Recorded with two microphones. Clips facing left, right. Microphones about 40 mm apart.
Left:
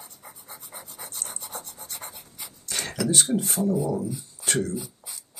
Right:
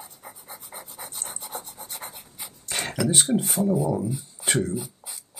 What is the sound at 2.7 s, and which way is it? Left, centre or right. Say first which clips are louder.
Beatboxing: right 2 dB; right.